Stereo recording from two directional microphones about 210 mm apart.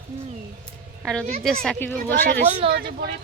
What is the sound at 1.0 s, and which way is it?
Speech, 5° left (ahead or behind).